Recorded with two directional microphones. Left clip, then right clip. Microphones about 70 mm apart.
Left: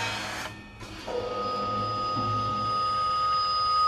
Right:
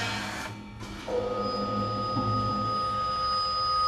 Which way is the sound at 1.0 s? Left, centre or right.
Left.